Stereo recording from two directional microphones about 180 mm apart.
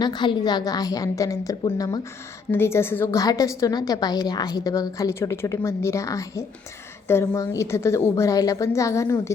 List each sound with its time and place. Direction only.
0.0 s a woman's voice: 25° left (ahead or behind)